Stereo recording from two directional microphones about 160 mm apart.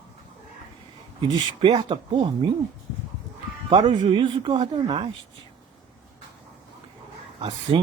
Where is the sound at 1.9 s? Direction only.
30° right (ahead or behind).